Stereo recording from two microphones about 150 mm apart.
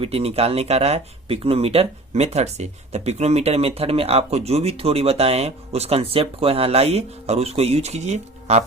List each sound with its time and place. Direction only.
0.0 s speech: 40° right (ahead or behind)